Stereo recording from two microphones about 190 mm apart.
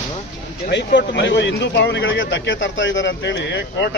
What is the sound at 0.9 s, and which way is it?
Speech, 70° left (ahead or behind).